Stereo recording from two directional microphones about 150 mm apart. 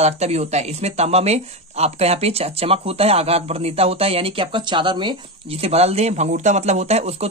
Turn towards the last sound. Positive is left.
turn(degrees=-45)  # may be behind; listen again after turning